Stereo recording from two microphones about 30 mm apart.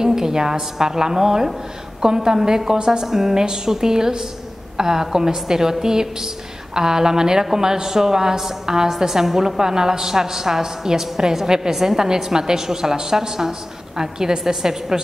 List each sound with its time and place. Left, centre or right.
0.0 s a woman's voice: centre
3.1 s a woman's voice: centre